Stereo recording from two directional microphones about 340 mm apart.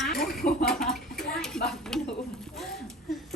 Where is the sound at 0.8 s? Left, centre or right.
Centre.